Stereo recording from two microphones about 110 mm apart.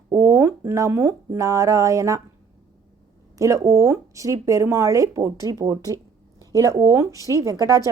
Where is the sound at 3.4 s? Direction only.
30° right (ahead or behind).